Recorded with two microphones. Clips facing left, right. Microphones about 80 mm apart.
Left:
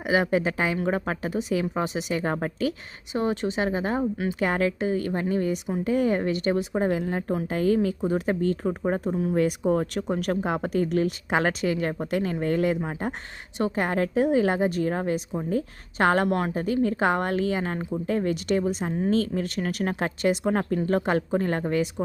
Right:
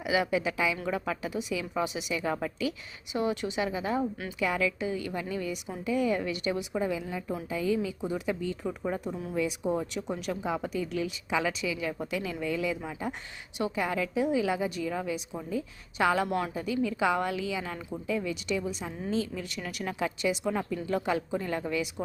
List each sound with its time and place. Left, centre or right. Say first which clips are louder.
0.0 s a woman's voice: left 5 dB; left
8.6 s a woman's voice: left 6 dB; left
9.3 s speech: left 6 dB; left